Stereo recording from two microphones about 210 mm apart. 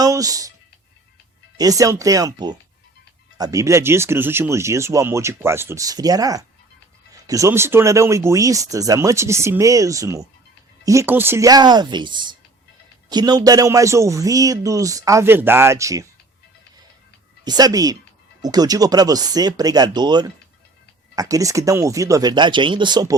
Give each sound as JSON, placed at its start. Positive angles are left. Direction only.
{"t": 0.0, "sound": "speech", "side_deg": -15}
{"t": 1.5, "sound": "speech", "side_deg": -15}
{"t": 17.4, "sound": "speech", "side_deg": -20}